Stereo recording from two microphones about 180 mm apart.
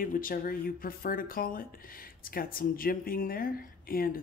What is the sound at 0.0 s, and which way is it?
Speech, 50° left (ahead or behind).